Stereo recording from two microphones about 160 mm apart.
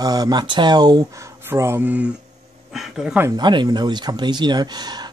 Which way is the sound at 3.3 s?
25° right (ahead or behind).